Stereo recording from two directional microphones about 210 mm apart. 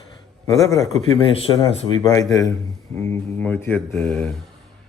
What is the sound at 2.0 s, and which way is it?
Speech, 15° left (ahead or behind).